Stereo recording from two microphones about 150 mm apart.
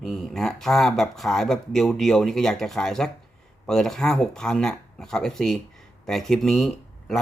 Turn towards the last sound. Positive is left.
turn(degrees=0)  # may be behind; listen again after turning